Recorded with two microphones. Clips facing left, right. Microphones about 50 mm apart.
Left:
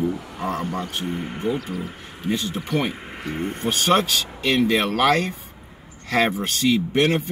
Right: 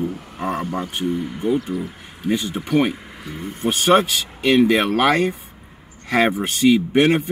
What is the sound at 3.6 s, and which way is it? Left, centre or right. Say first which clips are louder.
Speech: right 4 dB; right.